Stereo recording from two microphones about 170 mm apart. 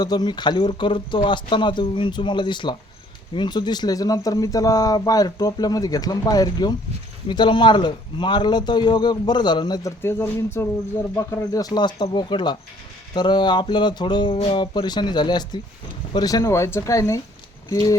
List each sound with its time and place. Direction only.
0.0 s speech: 25° left (ahead or behind)
10.0 s speech: 15° left (ahead or behind)